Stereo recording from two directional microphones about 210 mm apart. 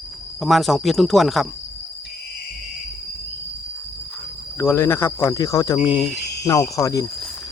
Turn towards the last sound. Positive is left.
turn(degrees=15)  # may be behind; listen again after turning